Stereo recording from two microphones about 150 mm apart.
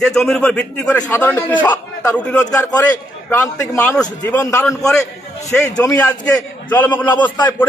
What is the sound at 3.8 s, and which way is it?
A man's voice, 10° left (ahead or behind).